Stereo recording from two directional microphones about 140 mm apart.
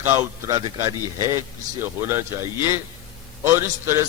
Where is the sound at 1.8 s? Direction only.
15° right (ahead or behind).